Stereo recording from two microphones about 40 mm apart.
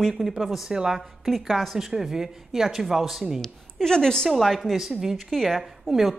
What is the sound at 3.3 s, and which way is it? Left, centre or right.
Speech, centre.